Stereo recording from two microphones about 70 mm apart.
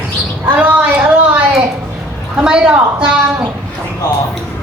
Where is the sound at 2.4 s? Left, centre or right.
Centre.